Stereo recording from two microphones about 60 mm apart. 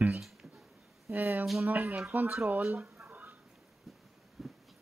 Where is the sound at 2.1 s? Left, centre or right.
Right.